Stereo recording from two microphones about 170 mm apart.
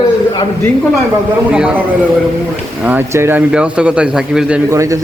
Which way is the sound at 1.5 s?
5° right (ahead or behind).